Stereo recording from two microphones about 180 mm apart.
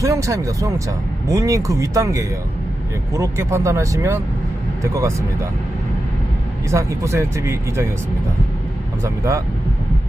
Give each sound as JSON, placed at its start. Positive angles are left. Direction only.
{"t": 0.0, "sound": "speech", "side_deg": -15}
{"t": 6.7, "sound": "speech", "side_deg": -15}
{"t": 9.0, "sound": "speech", "side_deg": -15}